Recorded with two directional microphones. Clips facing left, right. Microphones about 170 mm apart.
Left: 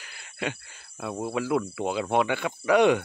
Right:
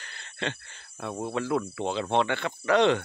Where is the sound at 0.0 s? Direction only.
10° left (ahead or behind).